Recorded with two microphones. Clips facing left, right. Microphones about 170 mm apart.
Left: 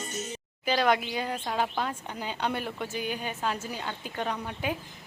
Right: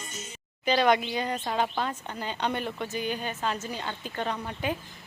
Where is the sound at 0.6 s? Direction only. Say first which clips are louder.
Right 2 dB; 5° left (ahead or behind).